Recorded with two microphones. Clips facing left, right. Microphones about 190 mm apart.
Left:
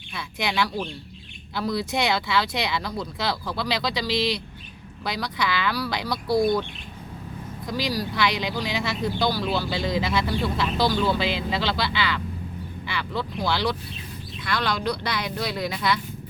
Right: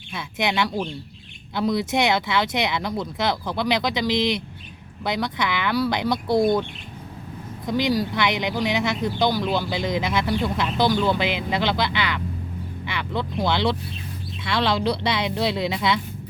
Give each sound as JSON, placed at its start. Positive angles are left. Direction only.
{"t": 0.2, "sound": "speech", "side_deg": -20}
{"t": 7.7, "sound": "speech", "side_deg": -20}